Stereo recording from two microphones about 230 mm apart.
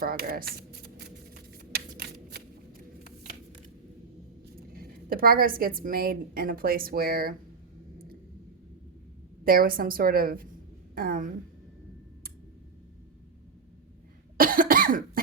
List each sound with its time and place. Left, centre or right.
0.0 s a sound: right
4.7 s a woman's voice: right
9.4 s a woman's voice: right
14.3 s cough: right